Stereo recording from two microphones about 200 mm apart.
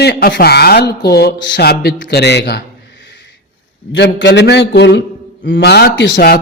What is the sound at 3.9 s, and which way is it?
A man's voice, 60° left (ahead or behind).